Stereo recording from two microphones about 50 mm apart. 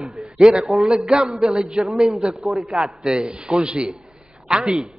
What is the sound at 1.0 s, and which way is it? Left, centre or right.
Speech, centre.